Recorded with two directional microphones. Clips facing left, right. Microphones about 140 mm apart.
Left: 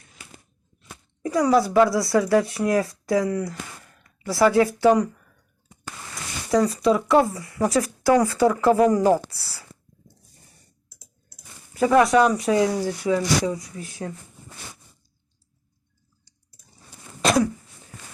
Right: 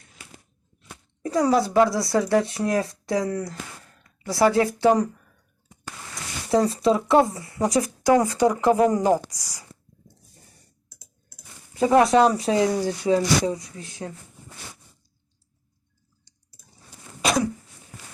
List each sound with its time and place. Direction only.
1.3 s speech: 30° right (ahead or behind)
6.5 s speech: 30° right (ahead or behind); by 9.6 s 15° right (ahead or behind)
11.7 s speech: 25° right (ahead or behind)